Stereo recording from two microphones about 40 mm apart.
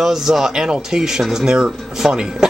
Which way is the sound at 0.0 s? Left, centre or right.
Centre.